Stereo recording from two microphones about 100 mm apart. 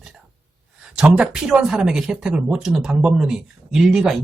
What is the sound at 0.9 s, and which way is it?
Speech, 5° right (ahead or behind).